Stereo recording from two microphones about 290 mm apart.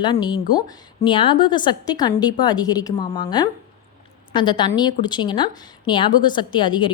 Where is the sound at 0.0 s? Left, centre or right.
Centre.